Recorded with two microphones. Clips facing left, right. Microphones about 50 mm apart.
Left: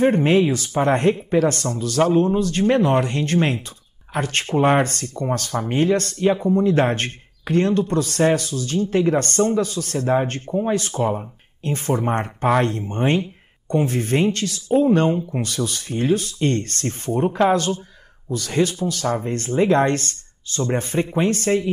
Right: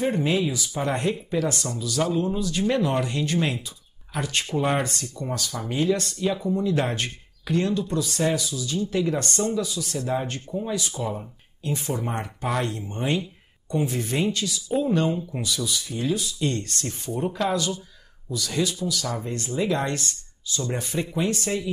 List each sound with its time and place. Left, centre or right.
0.0 s speech: left